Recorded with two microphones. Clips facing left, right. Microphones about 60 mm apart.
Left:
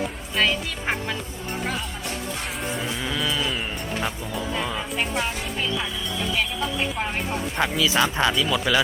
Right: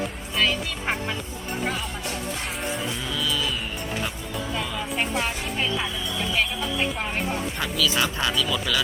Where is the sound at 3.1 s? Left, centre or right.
Left.